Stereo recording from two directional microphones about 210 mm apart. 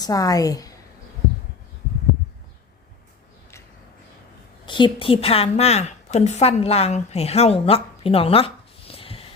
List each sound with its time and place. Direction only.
0.0 s a woman's voice: 15° left (ahead or behind)
4.6 s a woman's voice: 25° left (ahead or behind)